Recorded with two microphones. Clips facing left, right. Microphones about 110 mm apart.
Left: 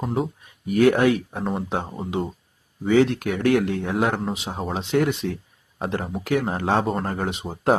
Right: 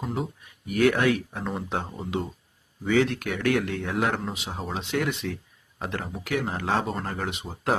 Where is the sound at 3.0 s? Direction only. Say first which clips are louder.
Left 5 dB; 30° left (ahead or behind); by 7.3 s 45° left (ahead or behind).